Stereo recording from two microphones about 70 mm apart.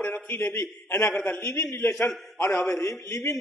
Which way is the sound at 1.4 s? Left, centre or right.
Left.